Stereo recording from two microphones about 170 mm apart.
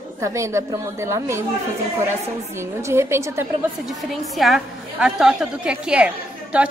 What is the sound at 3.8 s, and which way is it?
A woman's voice, centre (ahead or behind).